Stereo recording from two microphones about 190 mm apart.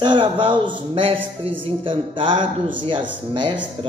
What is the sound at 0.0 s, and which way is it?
Speech, 25° right (ahead or behind).